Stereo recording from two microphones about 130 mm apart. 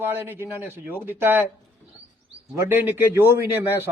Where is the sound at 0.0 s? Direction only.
15° right (ahead or behind).